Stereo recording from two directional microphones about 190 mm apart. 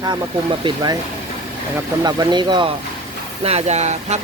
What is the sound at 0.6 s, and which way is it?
Speech, 20° right (ahead or behind).